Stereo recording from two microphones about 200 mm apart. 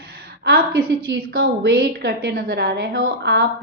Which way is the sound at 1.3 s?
55° right (ahead or behind).